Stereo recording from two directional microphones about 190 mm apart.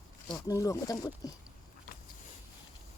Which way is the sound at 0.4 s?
15° left (ahead or behind).